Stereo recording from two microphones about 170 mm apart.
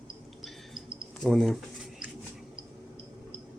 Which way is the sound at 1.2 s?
Centre (ahead or behind).